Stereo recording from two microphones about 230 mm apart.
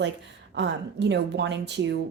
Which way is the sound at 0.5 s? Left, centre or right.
Right.